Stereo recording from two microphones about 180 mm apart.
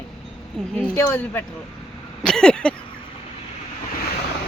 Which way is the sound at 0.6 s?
Centre (ahead or behind).